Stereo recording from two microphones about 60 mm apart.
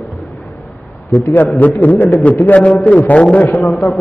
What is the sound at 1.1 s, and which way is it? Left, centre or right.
A man's voice, left.